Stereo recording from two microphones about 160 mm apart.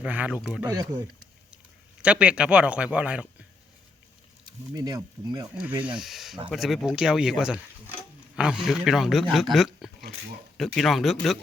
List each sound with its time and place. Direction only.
0.0 s speech: 10° right (ahead or behind)
0.7 s speech: 25° right (ahead or behind)
2.0 s speech: 5° right (ahead or behind)
4.4 s speech: 25° right (ahead or behind)
5.5 s speech: 10° right (ahead or behind)